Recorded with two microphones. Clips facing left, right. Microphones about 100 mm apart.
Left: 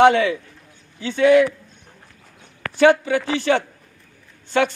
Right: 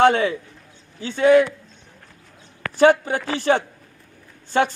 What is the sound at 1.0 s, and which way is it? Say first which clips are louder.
Speech: even; 35° right (ahead or behind).